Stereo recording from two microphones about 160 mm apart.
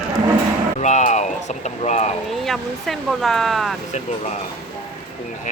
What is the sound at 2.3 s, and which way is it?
Speech, centre (ahead or behind).